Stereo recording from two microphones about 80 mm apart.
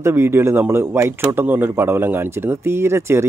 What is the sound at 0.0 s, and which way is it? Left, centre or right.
Speech, right.